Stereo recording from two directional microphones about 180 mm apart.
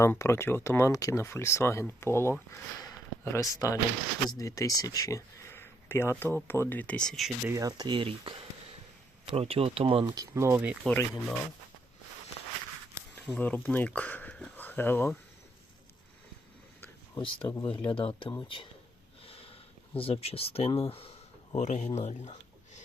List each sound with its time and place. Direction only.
0.0 s speech: 15° left (ahead or behind)
2.8 s a sound: 15° left (ahead or behind)
4.3 s speech: 20° left (ahead or behind); by 7.3 s 5° left (ahead or behind)
7.4 s speech: 20° right (ahead or behind)
9.3 s speech: 35° right (ahead or behind); by 10.8 s 10° right (ahead or behind)
10.8 s speech: 5° left (ahead or behind)
13.2 s speech: 10° left (ahead or behind)
17.2 s speech: 25° left (ahead or behind)
19.2 s sniff: 30° left (ahead or behind)
20.0 s speech: 30° left (ahead or behind)